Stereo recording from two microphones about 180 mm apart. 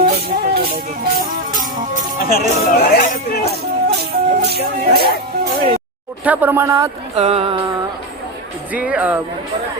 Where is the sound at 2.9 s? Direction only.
45° left (ahead or behind).